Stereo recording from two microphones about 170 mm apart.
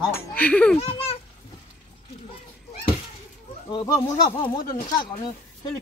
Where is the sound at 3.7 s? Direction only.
25° left (ahead or behind).